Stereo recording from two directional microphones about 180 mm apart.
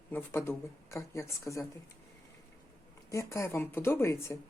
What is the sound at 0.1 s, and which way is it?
Speech, 10° left (ahead or behind).